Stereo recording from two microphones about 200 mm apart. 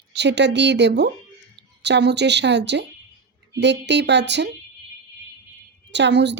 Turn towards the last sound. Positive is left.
turn(degrees=-60)  # may be behind; listen again after turning